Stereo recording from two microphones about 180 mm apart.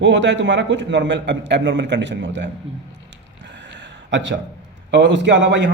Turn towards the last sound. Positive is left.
turn(degrees=-85)